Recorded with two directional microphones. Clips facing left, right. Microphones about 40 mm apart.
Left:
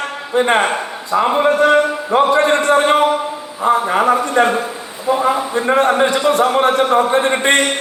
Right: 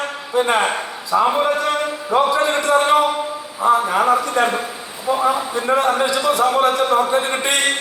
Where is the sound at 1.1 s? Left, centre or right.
Left.